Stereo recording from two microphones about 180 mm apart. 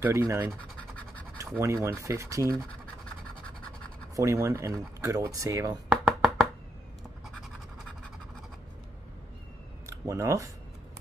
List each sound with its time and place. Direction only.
0.0 s speech: 15° right (ahead or behind)
1.6 s speech: 15° right (ahead or behind)
4.1 s speech: 15° right (ahead or behind)
6.0 s a sound: centre (ahead or behind)
9.8 s speech: 15° right (ahead or behind)